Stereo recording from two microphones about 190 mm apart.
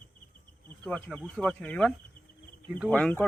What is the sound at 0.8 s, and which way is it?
Speech, 5° left (ahead or behind).